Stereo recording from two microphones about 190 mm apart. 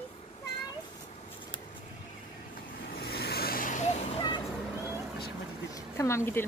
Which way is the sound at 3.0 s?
55° left (ahead or behind).